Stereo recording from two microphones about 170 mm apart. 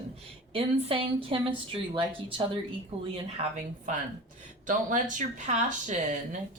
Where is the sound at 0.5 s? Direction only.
35° right (ahead or behind).